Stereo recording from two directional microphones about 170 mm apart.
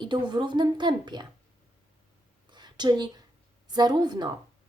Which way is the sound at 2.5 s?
25° right (ahead or behind).